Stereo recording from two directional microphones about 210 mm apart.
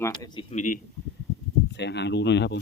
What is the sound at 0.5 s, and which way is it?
Speech, 40° left (ahead or behind).